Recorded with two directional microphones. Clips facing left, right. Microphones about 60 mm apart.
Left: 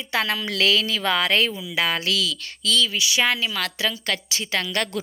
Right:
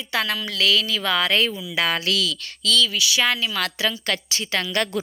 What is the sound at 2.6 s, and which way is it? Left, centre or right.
Speech, centre.